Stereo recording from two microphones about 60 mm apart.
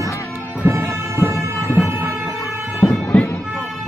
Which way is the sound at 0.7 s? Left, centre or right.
Right.